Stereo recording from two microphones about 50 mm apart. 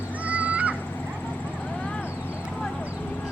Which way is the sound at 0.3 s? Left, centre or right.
Right.